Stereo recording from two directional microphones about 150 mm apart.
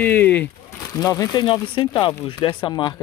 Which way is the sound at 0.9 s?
20° left (ahead or behind).